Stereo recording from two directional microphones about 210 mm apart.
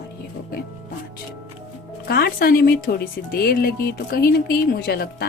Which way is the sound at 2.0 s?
45° left (ahead or behind).